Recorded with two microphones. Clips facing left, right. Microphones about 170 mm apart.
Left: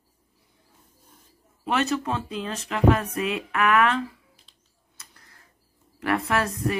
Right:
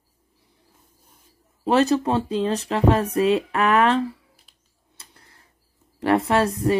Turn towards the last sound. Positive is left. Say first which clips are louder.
# right 5 dB
turn(degrees=-30)  # may be behind; listen again after turning